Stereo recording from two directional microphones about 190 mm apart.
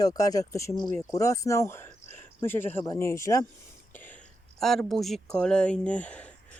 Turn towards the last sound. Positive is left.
turn(degrees=5)  # may be behind; listen again after turning